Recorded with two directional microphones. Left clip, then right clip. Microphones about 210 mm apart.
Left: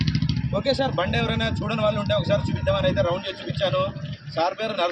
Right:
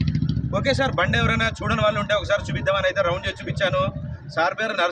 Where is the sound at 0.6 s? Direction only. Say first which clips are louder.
Right 2 dB; 10° left (ahead or behind).